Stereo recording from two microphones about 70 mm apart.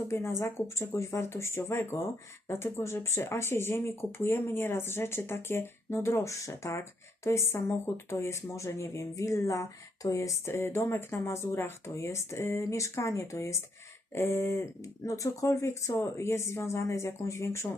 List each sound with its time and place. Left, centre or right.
0.1 s speech: left